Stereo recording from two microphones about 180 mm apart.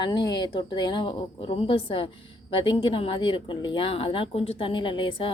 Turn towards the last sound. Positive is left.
turn(degrees=30)  # may be behind; listen again after turning